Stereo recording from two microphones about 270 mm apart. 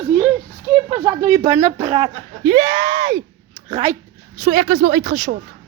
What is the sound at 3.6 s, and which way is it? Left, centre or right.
Speech, right.